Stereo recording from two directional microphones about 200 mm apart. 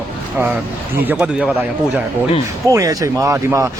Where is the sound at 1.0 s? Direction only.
5° right (ahead or behind).